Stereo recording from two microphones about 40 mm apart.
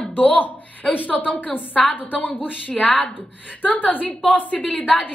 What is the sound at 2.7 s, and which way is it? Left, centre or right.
A woman's voice, left.